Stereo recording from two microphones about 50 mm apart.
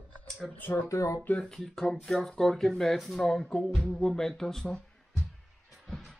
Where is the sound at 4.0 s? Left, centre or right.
Centre.